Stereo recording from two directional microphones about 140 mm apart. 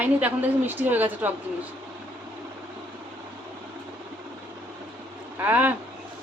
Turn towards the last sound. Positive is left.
turn(degrees=-15)  # may be behind; listen again after turning